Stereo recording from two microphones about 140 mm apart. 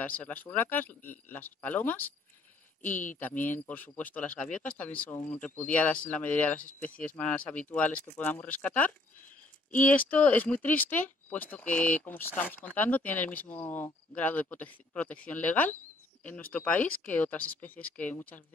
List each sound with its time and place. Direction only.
0.0 s speech: 10° left (ahead or behind)
3.2 s speech: 10° left (ahead or behind)